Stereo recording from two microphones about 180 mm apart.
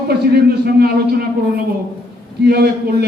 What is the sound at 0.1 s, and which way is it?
Speech, 60° right (ahead or behind).